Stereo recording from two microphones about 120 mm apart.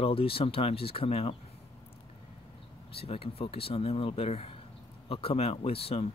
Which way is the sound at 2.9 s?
55° left (ahead or behind).